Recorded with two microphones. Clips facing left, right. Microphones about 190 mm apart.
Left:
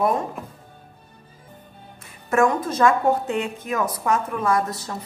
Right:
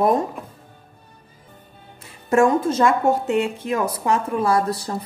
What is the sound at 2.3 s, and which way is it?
A woman's voice, 30° right (ahead or behind).